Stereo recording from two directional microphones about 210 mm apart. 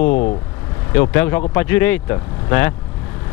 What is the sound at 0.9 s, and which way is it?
Speech, 10° left (ahead or behind).